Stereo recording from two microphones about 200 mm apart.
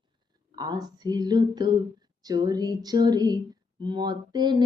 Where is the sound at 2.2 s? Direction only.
20° right (ahead or behind).